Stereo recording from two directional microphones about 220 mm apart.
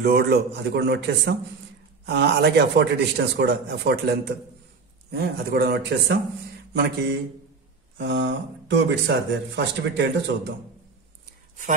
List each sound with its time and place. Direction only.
0.0 s a man's voice: 50° right (ahead or behind)